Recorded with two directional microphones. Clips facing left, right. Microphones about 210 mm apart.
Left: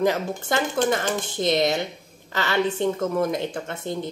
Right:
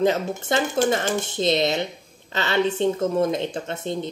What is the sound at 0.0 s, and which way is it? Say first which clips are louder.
Speech: right 1 dB; 20° right (ahead or behind).